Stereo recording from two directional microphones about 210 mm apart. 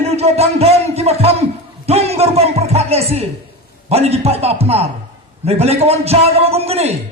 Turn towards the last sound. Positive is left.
turn(degrees=-30)  # may be behind; listen again after turning